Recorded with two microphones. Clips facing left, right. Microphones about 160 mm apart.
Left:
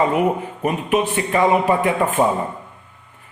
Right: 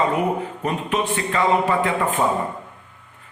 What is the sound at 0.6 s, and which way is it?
A man's voice, 15° left (ahead or behind).